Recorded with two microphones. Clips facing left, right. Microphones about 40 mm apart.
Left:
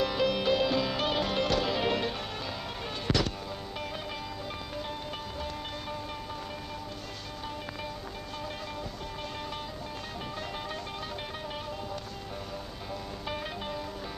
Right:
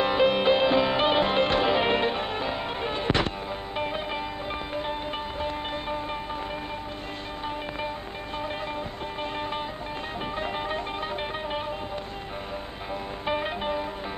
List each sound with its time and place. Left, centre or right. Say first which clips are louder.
0.0 s music: right 6 dB; right
13.3 s music: right 9 dB; right